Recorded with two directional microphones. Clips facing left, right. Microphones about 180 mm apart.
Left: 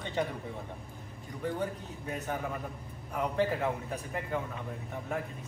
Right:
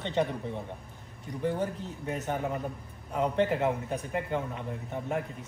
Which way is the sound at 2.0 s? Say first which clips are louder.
Right 4 dB; 20° right (ahead or behind).